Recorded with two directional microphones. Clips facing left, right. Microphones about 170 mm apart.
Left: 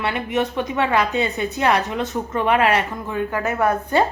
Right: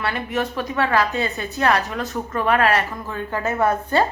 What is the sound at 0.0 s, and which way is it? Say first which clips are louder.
A woman's voice: left 2 dB; 20° left (ahead or behind).